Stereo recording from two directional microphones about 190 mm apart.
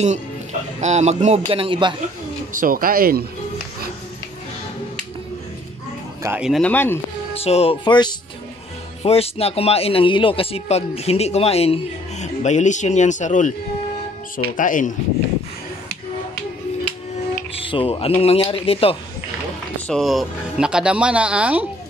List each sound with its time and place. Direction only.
0.7 s a man's voice: 35° right (ahead or behind)
2.6 s speech: 50° right (ahead or behind)
6.2 s speech: 5° right (ahead or behind)
6.6 s speech: 10° left (ahead or behind)
7.3 s speech: 30° left (ahead or behind)
17.6 s speech: 30° left (ahead or behind)
19.9 s speech: centre (ahead or behind)